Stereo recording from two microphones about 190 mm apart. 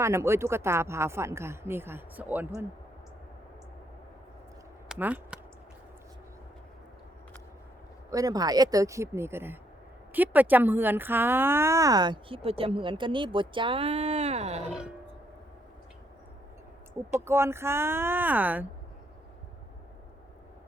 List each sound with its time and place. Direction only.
0.0 s speech: 15° right (ahead or behind)
4.9 s speech: 10° right (ahead or behind)
8.1 s speech: 20° right (ahead or behind); by 14.6 s 35° right (ahead or behind)
14.7 s a sound: 5° right (ahead or behind)
17.1 s speech: 15° right (ahead or behind)